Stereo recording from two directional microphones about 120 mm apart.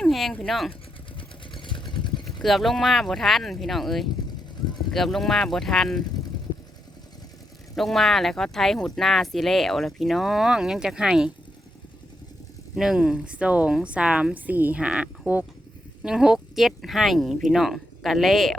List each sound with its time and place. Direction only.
0.0 s a sound: centre (ahead or behind)
0.4 s speech: centre (ahead or behind)
1.5 s vehicle: 40° left (ahead or behind)
2.2 s speech: centre (ahead or behind)
7.8 s speech: centre (ahead or behind)
12.7 s a woman's voice: 5° right (ahead or behind)